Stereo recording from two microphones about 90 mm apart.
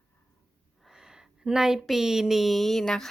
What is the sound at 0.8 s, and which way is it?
Speech, 5° right (ahead or behind).